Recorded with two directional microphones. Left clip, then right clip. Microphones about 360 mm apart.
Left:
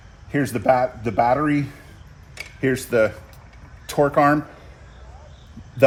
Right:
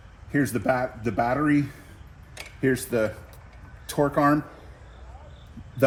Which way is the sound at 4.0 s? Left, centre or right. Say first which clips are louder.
Left 5 dB; centre.